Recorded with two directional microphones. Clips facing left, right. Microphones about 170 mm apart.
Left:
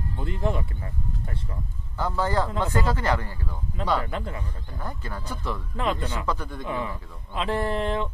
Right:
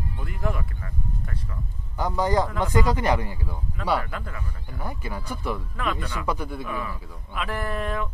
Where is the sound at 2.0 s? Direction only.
15° right (ahead or behind).